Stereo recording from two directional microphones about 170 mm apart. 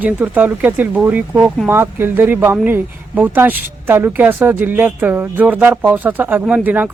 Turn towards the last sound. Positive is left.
turn(degrees=-10)  # may be behind; listen again after turning